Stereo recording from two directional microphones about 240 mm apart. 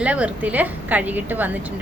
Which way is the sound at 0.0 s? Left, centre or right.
Centre.